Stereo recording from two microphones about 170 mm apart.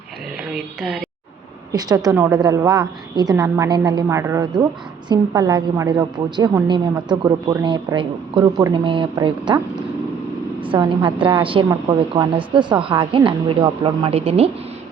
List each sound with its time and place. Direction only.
0.5 s speech: centre (ahead or behind)
1.7 s a woman's voice: 20° right (ahead or behind)